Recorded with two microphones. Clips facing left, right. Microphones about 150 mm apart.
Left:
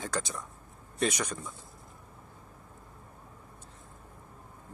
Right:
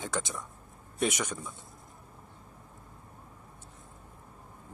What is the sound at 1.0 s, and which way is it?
Speech, 25° right (ahead or behind).